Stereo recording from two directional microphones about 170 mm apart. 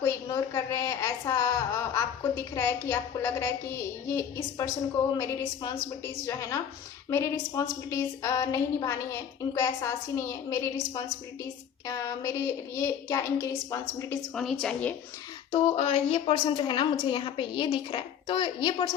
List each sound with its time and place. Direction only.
0.0 s a woman's voice: 20° left (ahead or behind)
11.9 s a sound: 20° left (ahead or behind)
12.7 s a woman's voice: 15° left (ahead or behind)
14.3 s a woman's voice: centre (ahead or behind)
15.5 s a woman's voice: 35° left (ahead or behind)